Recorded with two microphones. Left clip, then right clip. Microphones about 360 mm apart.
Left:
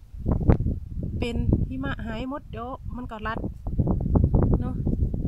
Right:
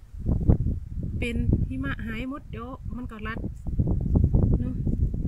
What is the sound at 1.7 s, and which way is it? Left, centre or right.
Speech, centre.